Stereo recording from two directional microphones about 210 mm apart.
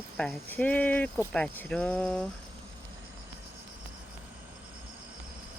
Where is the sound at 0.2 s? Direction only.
5° left (ahead or behind).